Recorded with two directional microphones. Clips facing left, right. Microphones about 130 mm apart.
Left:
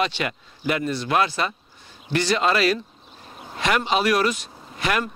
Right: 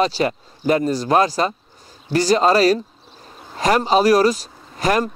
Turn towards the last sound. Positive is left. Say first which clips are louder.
# right 6 dB
turn(degrees=-40)  # may be behind; listen again after turning